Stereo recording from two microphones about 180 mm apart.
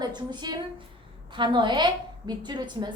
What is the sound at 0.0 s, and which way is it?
A woman's voice, 25° right (ahead or behind).